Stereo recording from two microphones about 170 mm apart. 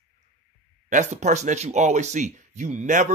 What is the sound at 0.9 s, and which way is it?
Speech, 45° right (ahead or behind).